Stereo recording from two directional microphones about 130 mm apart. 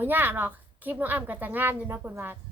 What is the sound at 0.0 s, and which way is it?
A woman's voice, 15° right (ahead or behind).